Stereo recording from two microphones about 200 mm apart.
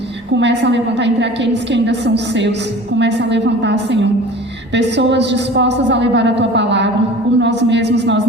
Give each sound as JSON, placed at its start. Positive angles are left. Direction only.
{"t": 0.3, "sound": "a woman's voice", "side_deg": -60}